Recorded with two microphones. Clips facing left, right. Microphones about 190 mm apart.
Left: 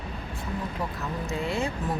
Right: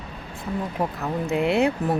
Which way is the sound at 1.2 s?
65° right (ahead or behind).